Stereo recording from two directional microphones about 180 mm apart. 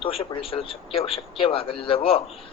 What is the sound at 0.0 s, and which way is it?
A man's voice, 30° left (ahead or behind).